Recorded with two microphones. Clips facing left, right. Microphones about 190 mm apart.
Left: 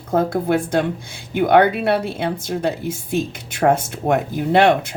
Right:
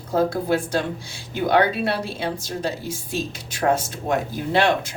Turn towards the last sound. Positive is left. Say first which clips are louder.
# left 5 dB
turn(degrees=60)  # may be behind; listen again after turning